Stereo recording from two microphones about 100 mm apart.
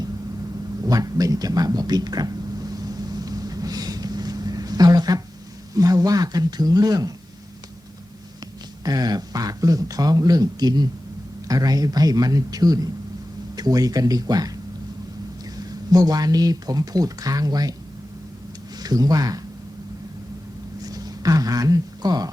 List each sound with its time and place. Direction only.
0.9 s a sound: 35° right (ahead or behind)
5.7 s speech: 35° right (ahead or behind)
8.8 s speech: 40° right (ahead or behind)
15.9 s speech: 40° right (ahead or behind)
18.8 s speech: 40° right (ahead or behind)
20.8 s a sound: 40° right (ahead or behind)